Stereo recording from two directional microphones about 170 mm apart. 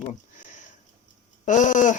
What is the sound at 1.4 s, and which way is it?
Speech, 45° left (ahead or behind).